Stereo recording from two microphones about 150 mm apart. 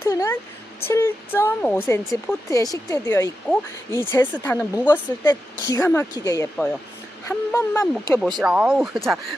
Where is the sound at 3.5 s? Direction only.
10° left (ahead or behind).